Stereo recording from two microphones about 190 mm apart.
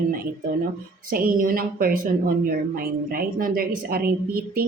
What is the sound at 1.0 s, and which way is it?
Speech, 50° right (ahead or behind).